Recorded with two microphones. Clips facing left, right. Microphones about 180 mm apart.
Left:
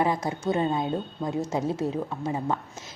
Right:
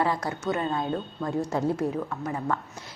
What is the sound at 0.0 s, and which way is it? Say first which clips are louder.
A woman's voice: left 1 dB; 20° left (ahead or behind).